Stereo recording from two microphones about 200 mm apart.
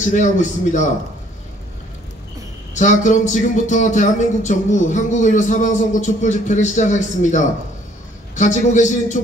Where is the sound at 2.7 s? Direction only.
40° left (ahead or behind).